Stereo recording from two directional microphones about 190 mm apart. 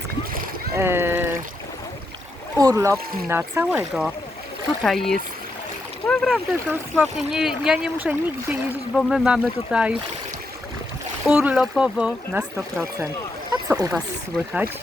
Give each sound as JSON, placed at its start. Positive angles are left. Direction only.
{"t": 0.8, "sound": "speech", "side_deg": -10}
{"t": 2.6, "sound": "speech", "side_deg": -20}
{"t": 11.3, "sound": "speech", "side_deg": -5}
{"t": 13.5, "sound": "a sound", "side_deg": -20}
{"t": 13.9, "sound": "speech", "side_deg": -5}